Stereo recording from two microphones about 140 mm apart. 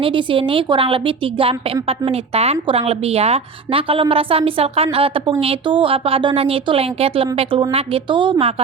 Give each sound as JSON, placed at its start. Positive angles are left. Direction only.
{"t": 0.0, "sound": "a woman's voice", "side_deg": -35}